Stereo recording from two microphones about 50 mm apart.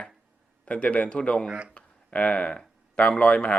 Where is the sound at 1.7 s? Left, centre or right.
Left.